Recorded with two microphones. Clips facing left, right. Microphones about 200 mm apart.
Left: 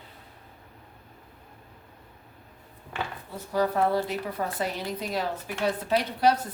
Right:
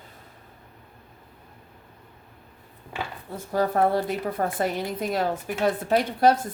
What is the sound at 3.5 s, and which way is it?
A woman's voice, 50° right (ahead or behind).